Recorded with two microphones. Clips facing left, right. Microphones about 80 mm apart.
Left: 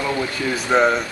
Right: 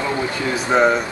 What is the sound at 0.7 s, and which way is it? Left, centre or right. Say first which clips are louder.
Speech: right 1 dB; centre.